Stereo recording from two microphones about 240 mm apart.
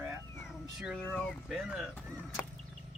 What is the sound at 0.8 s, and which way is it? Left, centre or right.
Speech, centre.